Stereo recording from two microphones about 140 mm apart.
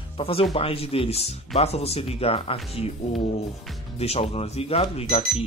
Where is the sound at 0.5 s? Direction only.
40° left (ahead or behind).